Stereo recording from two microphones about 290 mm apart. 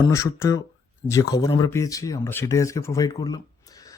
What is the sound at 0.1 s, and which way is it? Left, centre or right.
Speech, centre.